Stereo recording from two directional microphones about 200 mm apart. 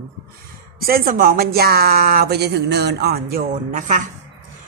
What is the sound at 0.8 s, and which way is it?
A woman's voice, 45° right (ahead or behind).